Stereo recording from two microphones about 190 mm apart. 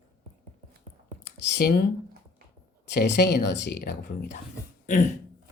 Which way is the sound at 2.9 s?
60° left (ahead or behind).